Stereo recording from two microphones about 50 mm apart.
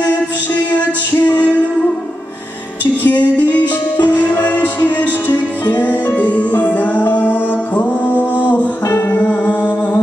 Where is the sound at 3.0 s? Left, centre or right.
Left.